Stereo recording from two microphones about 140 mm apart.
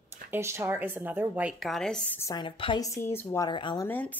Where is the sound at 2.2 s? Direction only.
25° left (ahead or behind).